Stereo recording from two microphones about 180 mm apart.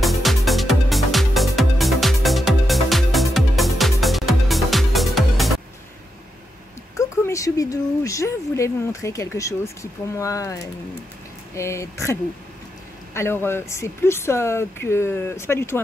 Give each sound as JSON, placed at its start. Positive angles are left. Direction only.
{"t": 0.0, "sound": "music", "side_deg": 0}
{"t": 7.0, "sound": "speech", "side_deg": 15}